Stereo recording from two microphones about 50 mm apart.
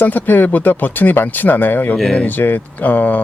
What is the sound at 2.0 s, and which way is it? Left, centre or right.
Speech, centre.